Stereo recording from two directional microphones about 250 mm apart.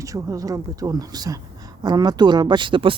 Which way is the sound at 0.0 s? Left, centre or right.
Centre.